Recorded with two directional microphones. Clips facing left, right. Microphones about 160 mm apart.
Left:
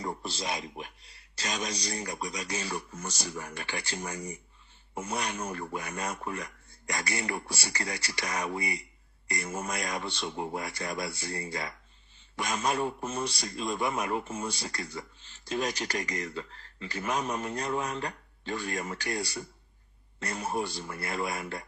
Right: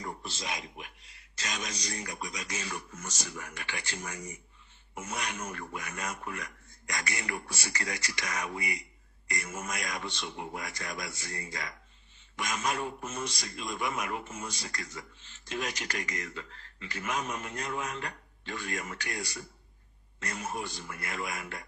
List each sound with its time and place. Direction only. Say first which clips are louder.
0.0 s a man's voice: left 4 dB; 35° left (ahead or behind)